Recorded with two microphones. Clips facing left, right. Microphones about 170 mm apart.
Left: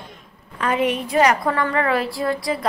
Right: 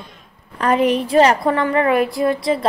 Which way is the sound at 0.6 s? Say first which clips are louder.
Right 5 dB; 35° right (ahead or behind).